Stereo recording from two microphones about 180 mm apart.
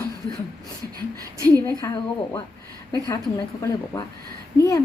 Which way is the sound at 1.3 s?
20° right (ahead or behind).